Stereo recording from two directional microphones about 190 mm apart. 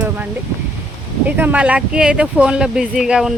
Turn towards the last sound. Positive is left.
turn(degrees=-5)  # may be behind; listen again after turning